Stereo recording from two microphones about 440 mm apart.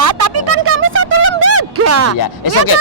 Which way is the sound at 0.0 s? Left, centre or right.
Right.